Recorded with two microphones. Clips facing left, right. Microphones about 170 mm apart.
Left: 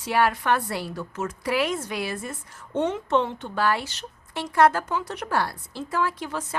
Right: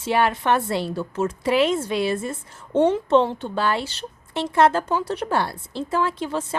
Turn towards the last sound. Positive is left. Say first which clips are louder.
# right 4 dB
turn(degrees=-25)  # may be behind; listen again after turning